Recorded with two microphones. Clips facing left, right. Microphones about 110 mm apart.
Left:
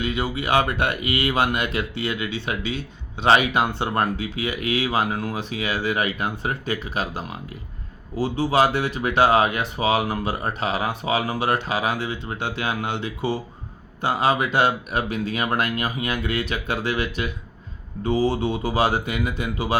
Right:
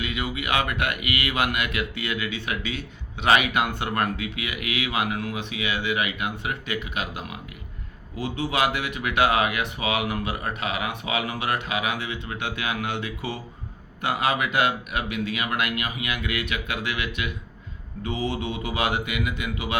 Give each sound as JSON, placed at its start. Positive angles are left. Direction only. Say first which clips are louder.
{"t": 0.0, "sound": "speech", "louder": "left 4 dB", "side_deg": 30}